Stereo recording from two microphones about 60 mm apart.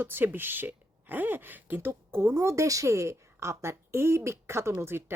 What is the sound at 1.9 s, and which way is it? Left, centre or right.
A woman's voice, right.